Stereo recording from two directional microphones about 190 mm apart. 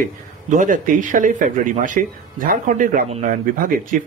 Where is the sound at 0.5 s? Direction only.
45° right (ahead or behind).